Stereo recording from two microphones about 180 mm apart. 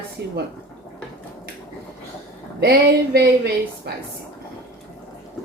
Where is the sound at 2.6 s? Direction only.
60° right (ahead or behind).